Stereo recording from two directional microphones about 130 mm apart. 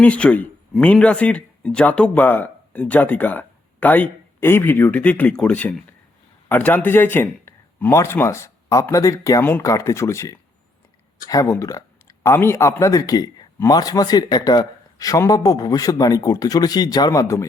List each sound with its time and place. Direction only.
0.0 s a man's voice: 10° left (ahead or behind)